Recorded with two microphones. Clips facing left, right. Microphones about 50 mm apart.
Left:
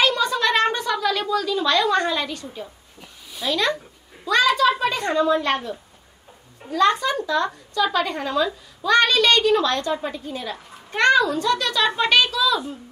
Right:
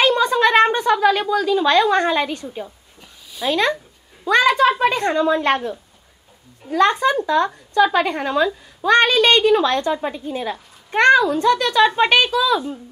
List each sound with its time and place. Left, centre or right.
0.0 s a sound: right
1.2 s a woman's voice: right
6.7 s a woman's voice: right